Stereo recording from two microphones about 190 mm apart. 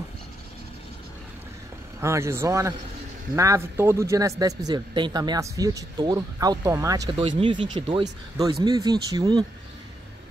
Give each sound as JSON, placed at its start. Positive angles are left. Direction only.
{"t": 2.0, "sound": "speech", "side_deg": -15}
{"t": 7.2, "sound": "speech", "side_deg": -30}